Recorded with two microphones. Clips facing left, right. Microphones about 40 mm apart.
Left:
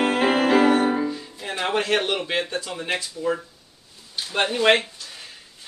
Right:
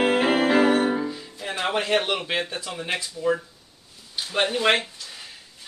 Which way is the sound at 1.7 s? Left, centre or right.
Centre.